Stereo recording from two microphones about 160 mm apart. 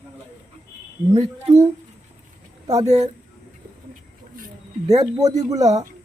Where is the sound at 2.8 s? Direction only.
45° right (ahead or behind).